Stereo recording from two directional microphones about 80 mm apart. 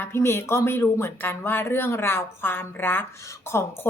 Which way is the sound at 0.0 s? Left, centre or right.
Left.